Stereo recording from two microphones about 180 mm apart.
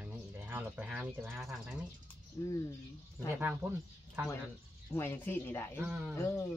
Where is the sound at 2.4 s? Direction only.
15° left (ahead or behind).